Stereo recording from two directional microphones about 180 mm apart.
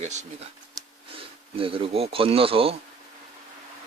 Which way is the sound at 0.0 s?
40° right (ahead or behind).